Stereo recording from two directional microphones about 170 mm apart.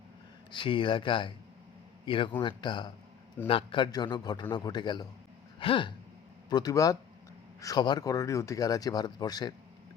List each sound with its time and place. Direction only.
0.5 s a man's voice: 30° left (ahead or behind)
5.5 s a sound: 30° left (ahead or behind)
6.5 s speech: 20° left (ahead or behind)